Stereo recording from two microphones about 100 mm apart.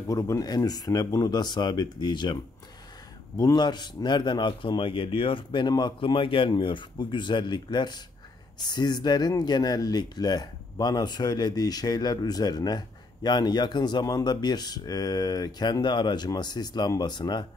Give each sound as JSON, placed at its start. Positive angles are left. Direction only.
{"t": 0.1, "sound": "speech", "side_deg": 35}
{"t": 3.3, "sound": "a man's voice", "side_deg": 45}